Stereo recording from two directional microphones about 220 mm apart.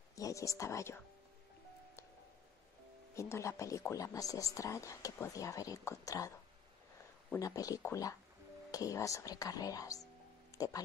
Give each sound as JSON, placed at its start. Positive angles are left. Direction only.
{"t": 0.1, "sound": "speech", "side_deg": 15}
{"t": 3.2, "sound": "speech", "side_deg": 10}
{"t": 7.3, "sound": "speech", "side_deg": 15}
{"t": 10.5, "sound": "music", "side_deg": 15}